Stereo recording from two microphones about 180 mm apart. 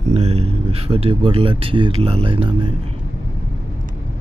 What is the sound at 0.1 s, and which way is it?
Speech, 35° right (ahead or behind).